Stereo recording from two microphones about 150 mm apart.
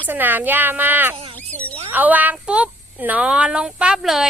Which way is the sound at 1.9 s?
10° right (ahead or behind).